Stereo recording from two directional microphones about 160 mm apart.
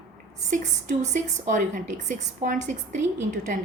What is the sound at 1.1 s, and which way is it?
Speech, 55° right (ahead or behind).